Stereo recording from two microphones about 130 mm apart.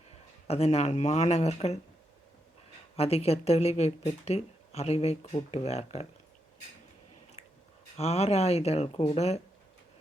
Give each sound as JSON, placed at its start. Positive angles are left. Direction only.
{"t": 0.1, "sound": "speech", "side_deg": 50}
{"t": 2.9, "sound": "speech", "side_deg": 50}
{"t": 7.9, "sound": "speech", "side_deg": 55}